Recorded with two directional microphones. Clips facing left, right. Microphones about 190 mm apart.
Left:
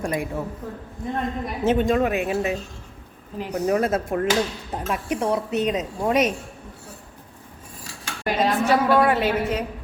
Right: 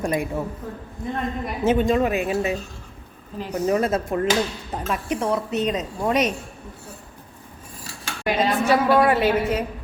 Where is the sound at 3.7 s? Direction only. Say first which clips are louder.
Even; 5° left (ahead or behind).